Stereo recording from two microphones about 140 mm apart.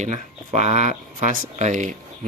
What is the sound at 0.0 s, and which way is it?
Speech, 55° right (ahead or behind).